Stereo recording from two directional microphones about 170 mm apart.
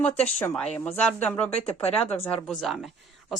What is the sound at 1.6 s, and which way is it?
Speech, 35° left (ahead or behind).